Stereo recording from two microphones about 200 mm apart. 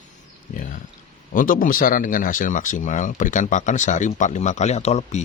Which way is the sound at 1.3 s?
45° left (ahead or behind).